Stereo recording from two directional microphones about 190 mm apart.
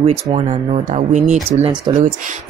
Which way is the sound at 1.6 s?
25° right (ahead or behind).